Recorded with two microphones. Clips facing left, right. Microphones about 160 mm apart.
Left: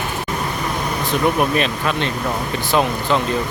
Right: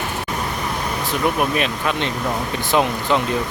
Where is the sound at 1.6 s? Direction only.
15° right (ahead or behind).